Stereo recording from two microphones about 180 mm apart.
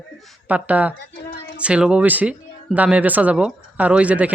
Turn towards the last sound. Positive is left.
turn(degrees=-10)  # may be behind; listen again after turning